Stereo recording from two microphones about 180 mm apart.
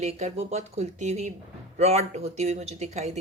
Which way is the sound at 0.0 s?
40° right (ahead or behind).